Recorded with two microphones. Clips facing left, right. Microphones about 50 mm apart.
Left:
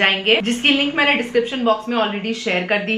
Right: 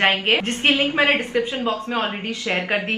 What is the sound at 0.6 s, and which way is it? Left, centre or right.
Speech, left.